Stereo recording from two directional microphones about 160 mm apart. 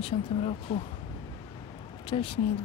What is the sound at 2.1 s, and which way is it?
Speech, 35° left (ahead or behind).